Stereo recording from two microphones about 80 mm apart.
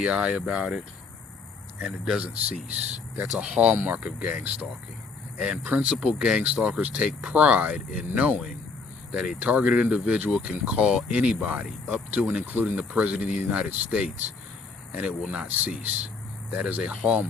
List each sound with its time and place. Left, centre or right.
0.0 s speech: centre
1.8 s speech: centre